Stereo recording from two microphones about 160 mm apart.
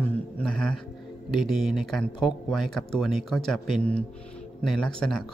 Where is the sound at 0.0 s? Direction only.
5° left (ahead or behind).